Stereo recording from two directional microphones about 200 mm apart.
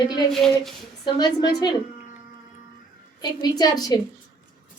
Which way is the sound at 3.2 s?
20° left (ahead or behind).